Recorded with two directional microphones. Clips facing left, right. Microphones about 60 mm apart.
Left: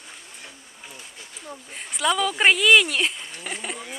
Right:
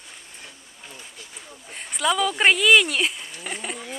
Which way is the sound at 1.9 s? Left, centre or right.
Centre.